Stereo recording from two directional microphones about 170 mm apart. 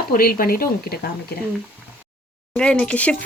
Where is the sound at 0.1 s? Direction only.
60° left (ahead or behind).